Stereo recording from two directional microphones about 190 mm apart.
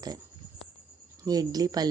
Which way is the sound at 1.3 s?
20° right (ahead or behind).